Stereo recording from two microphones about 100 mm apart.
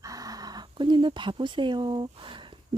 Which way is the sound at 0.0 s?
35° right (ahead or behind).